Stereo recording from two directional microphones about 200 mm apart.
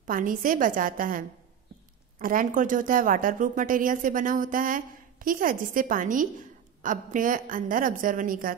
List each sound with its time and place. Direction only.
0.0 s speech: 40° right (ahead or behind)